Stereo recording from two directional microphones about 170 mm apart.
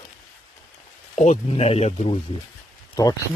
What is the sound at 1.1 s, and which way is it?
Speech, 40° left (ahead or behind).